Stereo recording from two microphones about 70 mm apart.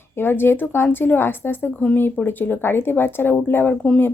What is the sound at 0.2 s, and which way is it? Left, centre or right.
Speech, left.